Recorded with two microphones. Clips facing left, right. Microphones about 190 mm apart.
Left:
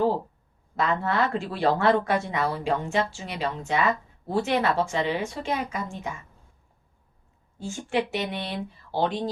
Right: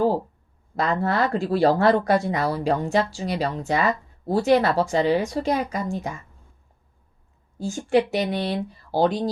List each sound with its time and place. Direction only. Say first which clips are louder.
0.8 s speech: right 2 dB; 40° right (ahead or behind)
7.6 s speech: right 6 dB; 40° right (ahead or behind)